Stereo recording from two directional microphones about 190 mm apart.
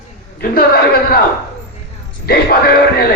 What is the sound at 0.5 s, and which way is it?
Speech, 50° left (ahead or behind).